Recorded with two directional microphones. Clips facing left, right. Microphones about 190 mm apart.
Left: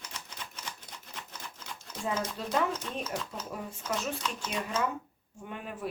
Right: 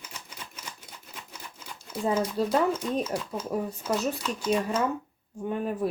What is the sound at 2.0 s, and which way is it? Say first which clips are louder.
Speech: right 8 dB; 35° right (ahead or behind).